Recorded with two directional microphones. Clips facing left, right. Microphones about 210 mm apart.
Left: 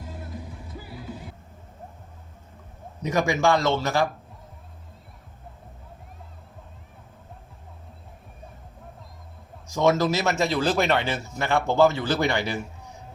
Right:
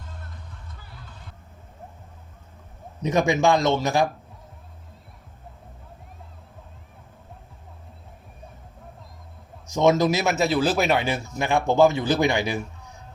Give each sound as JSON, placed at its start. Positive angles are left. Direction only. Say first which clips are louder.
{"t": 0.0, "sound": "music", "louder": "left 7 dB", "side_deg": 5}
{"t": 3.0, "sound": "speech", "louder": "right 2 dB", "side_deg": -20}
{"t": 9.6, "sound": "speech", "louder": "right 2 dB", "side_deg": -20}